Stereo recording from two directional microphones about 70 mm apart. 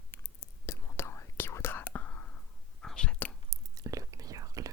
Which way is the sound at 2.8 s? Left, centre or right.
Centre.